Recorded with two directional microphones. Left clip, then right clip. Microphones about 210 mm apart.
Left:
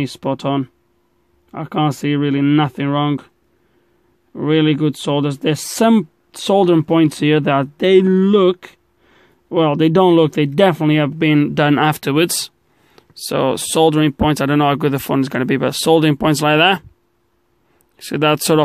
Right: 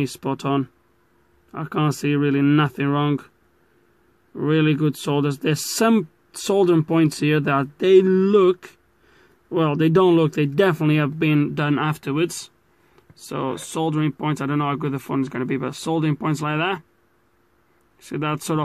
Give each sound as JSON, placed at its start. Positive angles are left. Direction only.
{"t": 0.0, "sound": "speech", "side_deg": 20}
{"t": 4.3, "sound": "speech", "side_deg": 20}
{"t": 17.9, "sound": "speech", "side_deg": 40}